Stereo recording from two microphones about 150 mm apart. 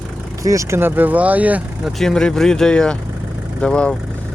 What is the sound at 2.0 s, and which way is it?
Speech, 5° left (ahead or behind).